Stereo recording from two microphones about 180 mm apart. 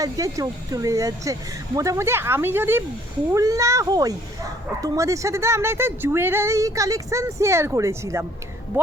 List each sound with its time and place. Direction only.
0.0 s speech: 20° right (ahead or behind)